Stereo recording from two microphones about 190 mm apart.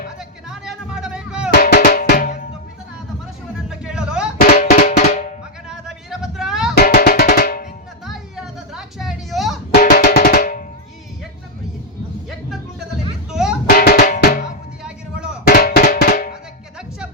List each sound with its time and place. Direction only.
0.2 s music: 5° right (ahead or behind)
1.5 s drum: 50° left (ahead or behind)
3.7 s a sound: 5° right (ahead or behind)
4.4 s drum: 40° left (ahead or behind)
5.6 s a sound: 5° right (ahead or behind)
6.7 s music: 55° left (ahead or behind)
8.7 s a sound: centre (ahead or behind)
9.9 s drum: 55° left (ahead or behind)
13.3 s music: 5° right (ahead or behind)
13.7 s drum: 55° left (ahead or behind)
14.8 s vehicle: 5° right (ahead or behind)
15.4 s drum: 55° left (ahead or behind)